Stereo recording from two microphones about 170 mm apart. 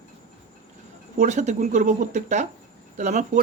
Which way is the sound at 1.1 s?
45° right (ahead or behind).